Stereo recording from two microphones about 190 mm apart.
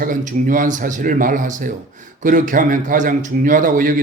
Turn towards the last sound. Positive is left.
turn(degrees=-45)  # may be behind; listen again after turning